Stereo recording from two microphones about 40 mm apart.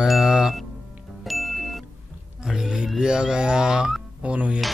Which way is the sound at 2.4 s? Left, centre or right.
Centre.